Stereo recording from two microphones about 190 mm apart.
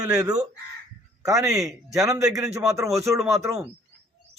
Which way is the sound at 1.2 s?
20° right (ahead or behind).